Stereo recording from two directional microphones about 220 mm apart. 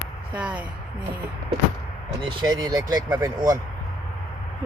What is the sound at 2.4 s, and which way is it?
Speech, 20° right (ahead or behind).